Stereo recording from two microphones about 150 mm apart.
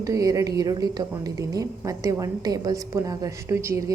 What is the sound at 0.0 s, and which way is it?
A woman's voice, 25° right (ahead or behind).